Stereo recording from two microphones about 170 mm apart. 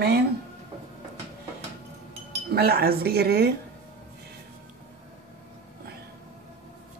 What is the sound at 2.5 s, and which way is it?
Speech, 70° right (ahead or behind).